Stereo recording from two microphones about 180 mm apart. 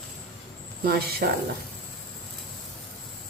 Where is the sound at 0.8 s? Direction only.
55° right (ahead or behind).